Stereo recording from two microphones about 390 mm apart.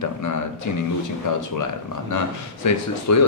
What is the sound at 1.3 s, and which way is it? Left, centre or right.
Speech, left.